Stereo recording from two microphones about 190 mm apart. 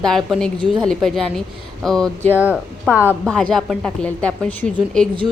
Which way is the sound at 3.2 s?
5° left (ahead or behind).